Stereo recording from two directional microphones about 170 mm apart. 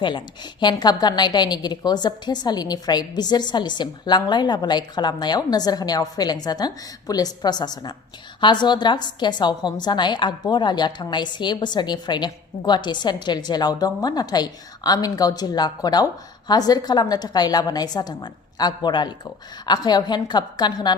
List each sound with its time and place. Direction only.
0.0 s a woman's voice: 30° left (ahead or behind)